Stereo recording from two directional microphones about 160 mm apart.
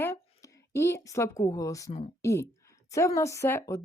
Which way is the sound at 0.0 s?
15° left (ahead or behind).